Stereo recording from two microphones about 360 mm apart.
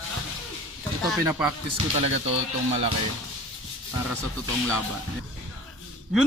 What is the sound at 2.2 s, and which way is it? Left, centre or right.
Speech, centre.